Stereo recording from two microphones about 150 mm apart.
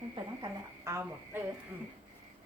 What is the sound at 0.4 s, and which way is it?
Speech, 20° right (ahead or behind).